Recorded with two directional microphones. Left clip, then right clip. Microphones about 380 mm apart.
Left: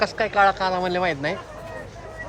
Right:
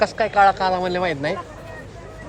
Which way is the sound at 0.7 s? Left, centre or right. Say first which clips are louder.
Right 2 dB; centre.